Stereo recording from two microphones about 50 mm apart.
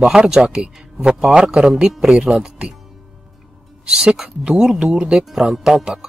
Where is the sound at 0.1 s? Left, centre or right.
Centre.